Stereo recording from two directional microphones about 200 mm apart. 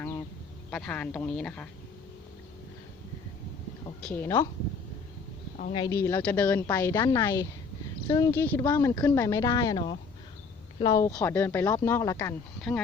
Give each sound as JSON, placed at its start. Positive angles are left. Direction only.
{"t": 0.7, "sound": "a woman's voice", "side_deg": 5}
{"t": 4.1, "sound": "a woman's voice", "side_deg": 10}
{"t": 5.7, "sound": "a woman's voice", "side_deg": 20}
{"t": 11.2, "sound": "a woman's voice", "side_deg": 10}